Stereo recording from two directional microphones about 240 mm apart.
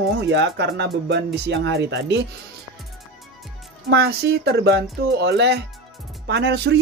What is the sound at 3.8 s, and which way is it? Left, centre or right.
Speech, right.